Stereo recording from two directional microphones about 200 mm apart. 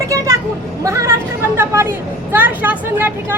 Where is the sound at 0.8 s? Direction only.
15° right (ahead or behind).